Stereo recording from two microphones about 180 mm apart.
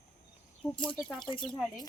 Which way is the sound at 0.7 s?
25° left (ahead or behind).